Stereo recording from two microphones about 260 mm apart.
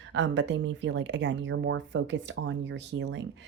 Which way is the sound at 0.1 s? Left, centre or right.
Right.